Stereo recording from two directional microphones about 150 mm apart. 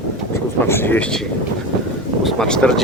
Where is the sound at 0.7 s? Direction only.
15° left (ahead or behind).